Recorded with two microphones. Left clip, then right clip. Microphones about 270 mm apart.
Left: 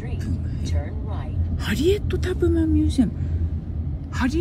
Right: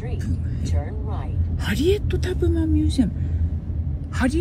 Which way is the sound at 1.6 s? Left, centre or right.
Left.